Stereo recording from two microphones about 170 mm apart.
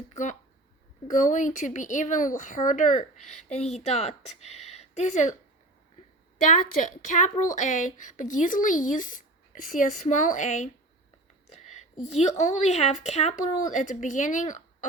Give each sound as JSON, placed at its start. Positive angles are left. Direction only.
{"t": 0.1, "sound": "a woman's voice", "side_deg": 45}
{"t": 6.5, "sound": "a woman's voice", "side_deg": 50}
{"t": 11.5, "sound": "a sound", "side_deg": 45}
{"t": 12.4, "sound": "a woman's voice", "side_deg": 40}